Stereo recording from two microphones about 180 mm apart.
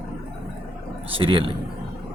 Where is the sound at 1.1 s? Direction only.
30° right (ahead or behind).